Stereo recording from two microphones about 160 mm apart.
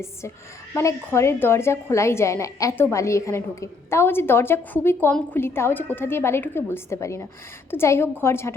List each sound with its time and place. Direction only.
0.7 s a woman's voice: 15° left (ahead or behind)